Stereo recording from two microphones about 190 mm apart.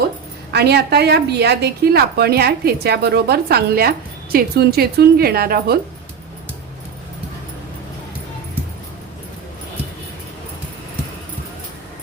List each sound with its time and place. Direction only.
0.5 s a woman's voice: 60° right (ahead or behind)